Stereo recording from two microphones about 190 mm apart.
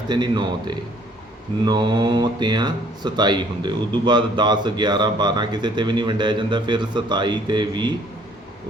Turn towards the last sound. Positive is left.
turn(degrees=-25)  # may be behind; listen again after turning